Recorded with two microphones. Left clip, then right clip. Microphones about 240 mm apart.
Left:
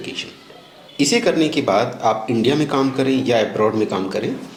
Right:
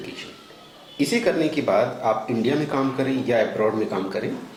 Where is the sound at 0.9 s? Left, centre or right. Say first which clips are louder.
Left 5 dB; left.